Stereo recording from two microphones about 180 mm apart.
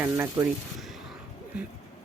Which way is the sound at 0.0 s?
10° right (ahead or behind).